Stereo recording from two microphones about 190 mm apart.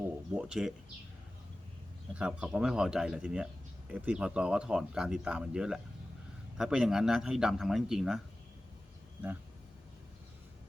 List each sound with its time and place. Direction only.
0.3 s speech: 5° right (ahead or behind)
2.1 s speech: 5° right (ahead or behind)